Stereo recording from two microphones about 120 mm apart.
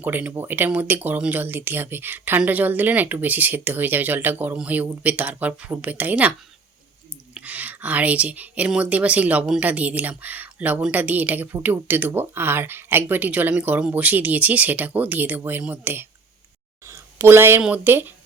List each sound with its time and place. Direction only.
0.0 s speech: 15° right (ahead or behind)
7.3 s speech: 15° right (ahead or behind)
16.8 s a sound: 20° right (ahead or behind)
17.6 s speech: 15° right (ahead or behind)